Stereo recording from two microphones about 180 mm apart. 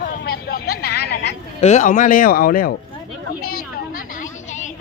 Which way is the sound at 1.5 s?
40° left (ahead or behind).